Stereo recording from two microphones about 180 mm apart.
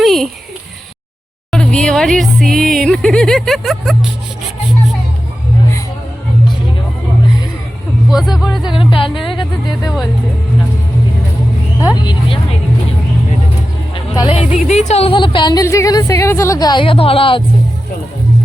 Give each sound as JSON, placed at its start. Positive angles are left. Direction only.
{"t": 0.0, "sound": "a sound", "side_deg": 0}
{"t": 1.5, "sound": "speech", "side_deg": 5}
{"t": 8.1, "sound": "music", "side_deg": 0}
{"t": 8.8, "sound": "speech", "side_deg": 30}
{"t": 11.8, "sound": "speech", "side_deg": 20}
{"t": 13.9, "sound": "music", "side_deg": 30}
{"t": 14.7, "sound": "speech", "side_deg": 40}